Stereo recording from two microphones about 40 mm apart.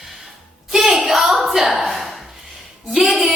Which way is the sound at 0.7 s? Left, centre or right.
Centre.